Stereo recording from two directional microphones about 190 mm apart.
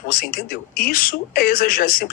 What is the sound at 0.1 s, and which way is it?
Speech, 50° left (ahead or behind).